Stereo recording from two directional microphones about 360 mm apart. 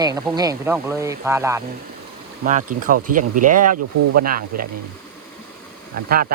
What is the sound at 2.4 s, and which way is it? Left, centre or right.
Speech, right.